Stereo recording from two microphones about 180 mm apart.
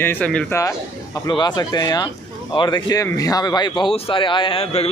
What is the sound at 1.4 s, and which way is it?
A man's voice, 20° left (ahead or behind).